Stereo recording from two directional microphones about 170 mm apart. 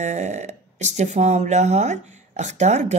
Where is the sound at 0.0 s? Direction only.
45° right (ahead or behind).